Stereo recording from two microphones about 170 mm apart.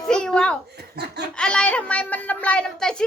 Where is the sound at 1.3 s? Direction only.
5° left (ahead or behind).